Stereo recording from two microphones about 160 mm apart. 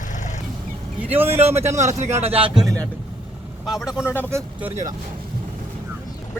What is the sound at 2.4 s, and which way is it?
Speech, 5° right (ahead or behind).